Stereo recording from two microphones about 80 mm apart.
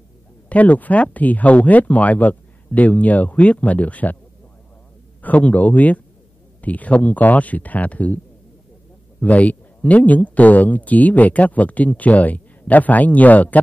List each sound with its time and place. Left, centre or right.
0.5 s speech: centre
5.2 s speech: centre
9.2 s speech: centre